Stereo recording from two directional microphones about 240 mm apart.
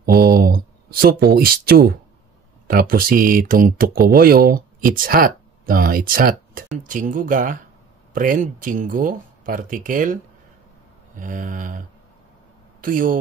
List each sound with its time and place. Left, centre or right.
0.0 s a sound: right
2.7 s speech: right
12.8 s speech: right